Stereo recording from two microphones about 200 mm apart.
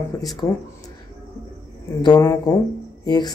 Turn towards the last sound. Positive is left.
turn(degrees=20)  # may be behind; listen again after turning